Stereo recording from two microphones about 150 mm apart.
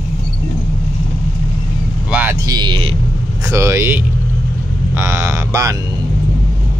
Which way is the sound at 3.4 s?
20° right (ahead or behind).